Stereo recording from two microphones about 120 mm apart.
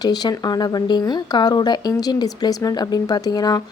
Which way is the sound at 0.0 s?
35° left (ahead or behind).